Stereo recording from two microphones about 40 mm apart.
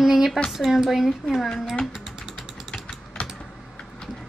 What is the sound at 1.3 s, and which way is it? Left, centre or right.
Speech, centre.